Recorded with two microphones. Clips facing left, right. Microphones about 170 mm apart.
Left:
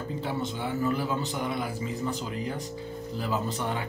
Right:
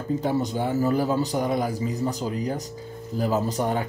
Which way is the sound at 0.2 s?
45° right (ahead or behind).